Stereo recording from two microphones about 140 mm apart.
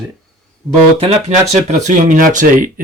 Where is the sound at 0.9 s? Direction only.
45° right (ahead or behind).